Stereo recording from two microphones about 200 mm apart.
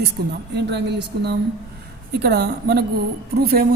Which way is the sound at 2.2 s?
55° right (ahead or behind).